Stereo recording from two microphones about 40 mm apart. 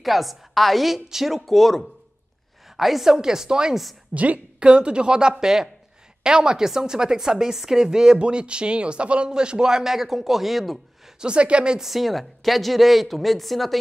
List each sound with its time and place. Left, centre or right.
0.0 s a woman's voice: centre
3.1 s a woman's voice: centre
4.1 s a woman's voice: right
4.6 s a woman's voice: right; by 10.8 s centre
11.1 s speech: right
11.8 s a woman's voice: centre